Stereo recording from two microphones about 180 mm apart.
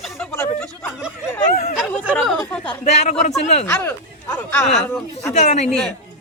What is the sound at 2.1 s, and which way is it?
Speech, 5° left (ahead or behind).